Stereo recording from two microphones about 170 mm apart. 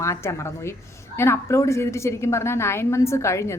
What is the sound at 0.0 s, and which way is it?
Speech, 15° left (ahead or behind).